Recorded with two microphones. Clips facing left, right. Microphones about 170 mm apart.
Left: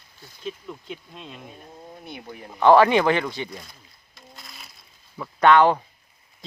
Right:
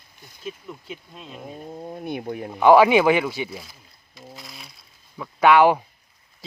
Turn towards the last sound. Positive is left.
turn(degrees=-10)  # may be behind; listen again after turning